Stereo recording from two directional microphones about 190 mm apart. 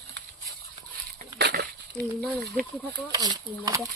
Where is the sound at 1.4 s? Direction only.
60° right (ahead or behind).